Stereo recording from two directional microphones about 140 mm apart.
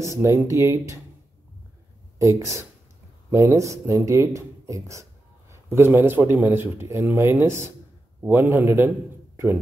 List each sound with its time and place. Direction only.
0.0 s speech: 20° right (ahead or behind)
2.1 s a man's voice: 20° right (ahead or behind)